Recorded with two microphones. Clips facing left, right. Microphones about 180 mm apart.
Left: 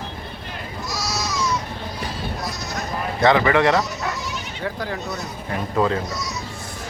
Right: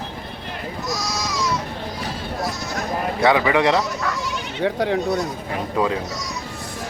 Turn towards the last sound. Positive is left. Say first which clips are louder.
# left 1 dB
turn(degrees=-10)  # may be behind; listen again after turning